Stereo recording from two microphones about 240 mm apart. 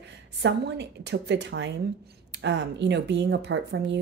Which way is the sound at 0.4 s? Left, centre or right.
Right.